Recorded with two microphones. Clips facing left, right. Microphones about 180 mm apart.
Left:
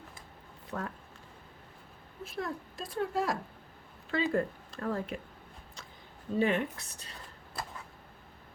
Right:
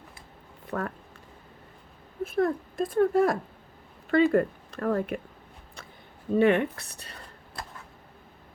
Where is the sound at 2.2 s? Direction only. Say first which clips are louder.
Right 12 dB; 55° right (ahead or behind).